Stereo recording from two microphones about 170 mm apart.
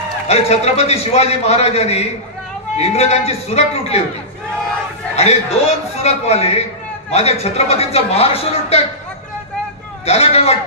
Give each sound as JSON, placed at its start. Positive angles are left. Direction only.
{"t": 0.3, "sound": "a man's voice", "side_deg": 40}
{"t": 5.1, "sound": "a man's voice", "side_deg": 40}
{"t": 10.0, "sound": "a man's voice", "side_deg": 40}